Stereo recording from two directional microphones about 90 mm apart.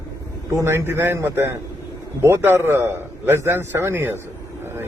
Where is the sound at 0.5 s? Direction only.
30° right (ahead or behind).